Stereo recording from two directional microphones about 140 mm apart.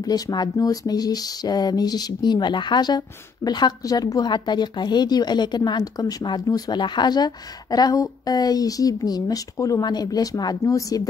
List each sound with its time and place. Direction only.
0.0 s speech: 30° left (ahead or behind)